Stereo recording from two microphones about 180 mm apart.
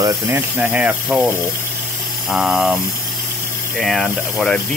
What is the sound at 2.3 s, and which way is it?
Speech, 5° right (ahead or behind).